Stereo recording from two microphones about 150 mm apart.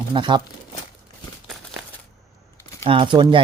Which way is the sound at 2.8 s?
35° right (ahead or behind).